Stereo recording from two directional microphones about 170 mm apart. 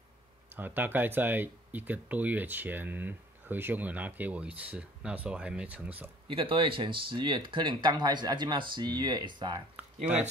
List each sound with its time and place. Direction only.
0.6 s speech: 10° right (ahead or behind)
6.2 s speech: 30° right (ahead or behind)